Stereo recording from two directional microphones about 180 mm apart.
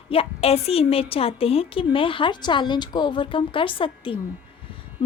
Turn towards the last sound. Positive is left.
turn(degrees=30)  # may be behind; listen again after turning